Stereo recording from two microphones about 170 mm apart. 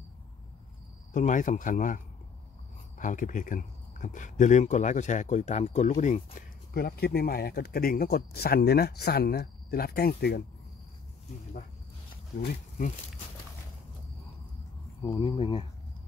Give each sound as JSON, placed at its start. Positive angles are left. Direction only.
{"t": 1.1, "sound": "speech", "side_deg": 50}
{"t": 3.0, "sound": "speech", "side_deg": 50}
{"t": 6.7, "sound": "speech", "side_deg": 65}
{"t": 15.0, "sound": "speech", "side_deg": 30}